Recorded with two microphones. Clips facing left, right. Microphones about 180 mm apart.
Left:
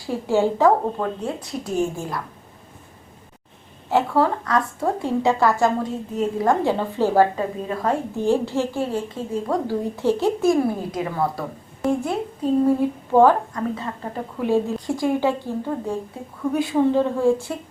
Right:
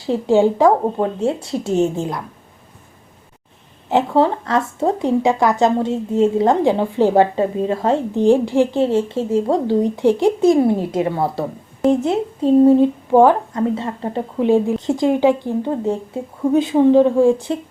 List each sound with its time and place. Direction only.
0.0 s speech: 20° right (ahead or behind)
3.8 s speech: 20° right (ahead or behind)